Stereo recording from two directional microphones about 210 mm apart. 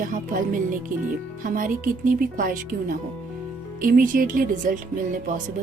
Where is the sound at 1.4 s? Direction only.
40° right (ahead or behind).